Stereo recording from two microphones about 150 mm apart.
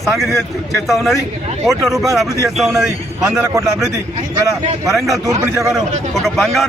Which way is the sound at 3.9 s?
20° right (ahead or behind).